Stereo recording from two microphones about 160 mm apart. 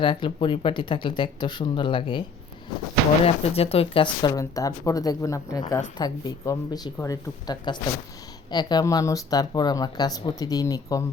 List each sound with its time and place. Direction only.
0.0 s speech: 30° left (ahead or behind)
3.2 s speech: 40° left (ahead or behind); by 11.0 s 20° left (ahead or behind)